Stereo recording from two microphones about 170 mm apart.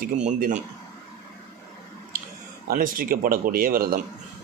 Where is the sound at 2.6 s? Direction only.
55° right (ahead or behind).